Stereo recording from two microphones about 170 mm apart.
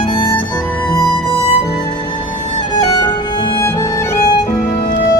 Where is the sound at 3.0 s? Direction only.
25° left (ahead or behind).